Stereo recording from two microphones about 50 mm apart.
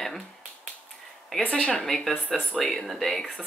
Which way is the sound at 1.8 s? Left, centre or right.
Centre.